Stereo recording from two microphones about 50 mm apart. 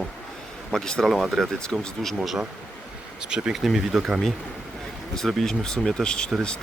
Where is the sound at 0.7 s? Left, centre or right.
Centre.